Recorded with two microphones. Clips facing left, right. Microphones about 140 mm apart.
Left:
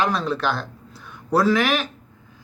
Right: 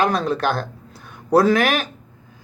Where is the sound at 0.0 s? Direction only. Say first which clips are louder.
Right 3 dB; 45° right (ahead or behind).